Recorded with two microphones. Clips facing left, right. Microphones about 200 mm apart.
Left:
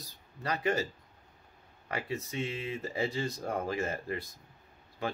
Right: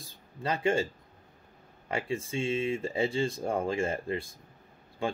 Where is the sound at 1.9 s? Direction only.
25° right (ahead or behind).